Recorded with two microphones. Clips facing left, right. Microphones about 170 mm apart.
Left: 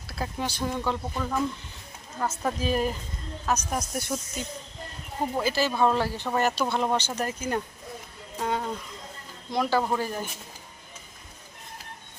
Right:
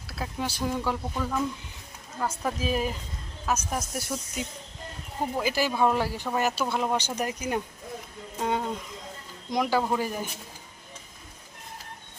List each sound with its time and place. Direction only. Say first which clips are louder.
0.1 s speech: left 1 dB; centre (ahead or behind)
1.1 s speech: even; 5° left (ahead or behind)
2.4 s speech: left 2 dB; 5° right (ahead or behind)